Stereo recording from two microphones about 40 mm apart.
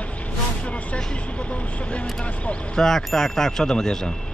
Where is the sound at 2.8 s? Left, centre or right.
Centre.